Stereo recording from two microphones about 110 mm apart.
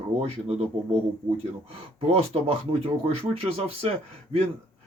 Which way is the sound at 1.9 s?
65° right (ahead or behind).